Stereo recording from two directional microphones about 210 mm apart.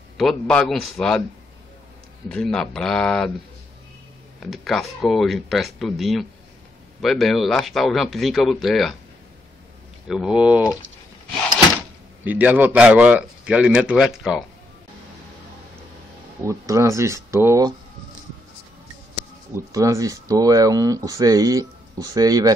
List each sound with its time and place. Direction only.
0.2 s a man's voice: centre (ahead or behind)
2.2 s a man's voice: 5° left (ahead or behind)
4.4 s a man's voice: centre (ahead or behind)
10.0 s a man's voice: 5° right (ahead or behind)
12.3 s a man's voice: 10° right (ahead or behind)
16.4 s speech: 15° right (ahead or behind)
19.5 s speech: 15° right (ahead or behind)